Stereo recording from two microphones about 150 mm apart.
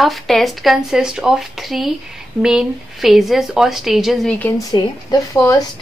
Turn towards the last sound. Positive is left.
turn(degrees=25)  # may be behind; listen again after turning